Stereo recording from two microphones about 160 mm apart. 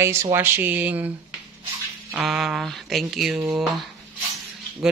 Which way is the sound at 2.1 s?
5° right (ahead or behind).